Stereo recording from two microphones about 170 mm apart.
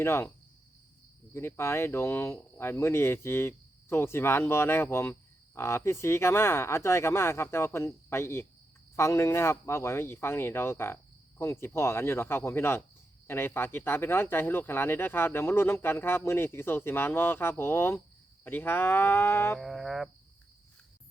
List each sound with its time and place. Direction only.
0.0 s speech: 15° left (ahead or behind)
1.3 s speech: 15° left (ahead or behind)
19.5 s music: centre (ahead or behind)